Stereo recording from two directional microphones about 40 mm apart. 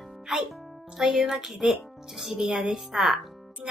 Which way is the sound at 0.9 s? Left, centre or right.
Centre.